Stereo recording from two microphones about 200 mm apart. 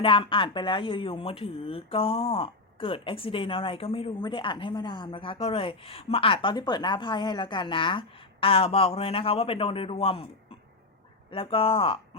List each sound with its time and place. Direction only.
0.0 s speech: 25° left (ahead or behind)
11.3 s speech: 25° left (ahead or behind)